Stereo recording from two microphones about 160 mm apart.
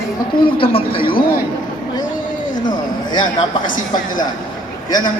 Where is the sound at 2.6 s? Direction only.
30° left (ahead or behind).